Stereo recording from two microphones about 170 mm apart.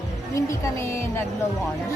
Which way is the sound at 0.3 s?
15° left (ahead or behind).